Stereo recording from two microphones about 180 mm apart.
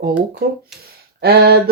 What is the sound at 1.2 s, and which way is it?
Speech, 60° right (ahead or behind).